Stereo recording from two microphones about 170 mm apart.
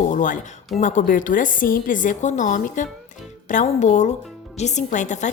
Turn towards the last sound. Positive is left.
turn(degrees=45)  # may be behind; listen again after turning